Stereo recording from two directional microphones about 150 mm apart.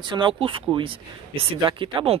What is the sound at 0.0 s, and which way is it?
Speech, 30° right (ahead or behind).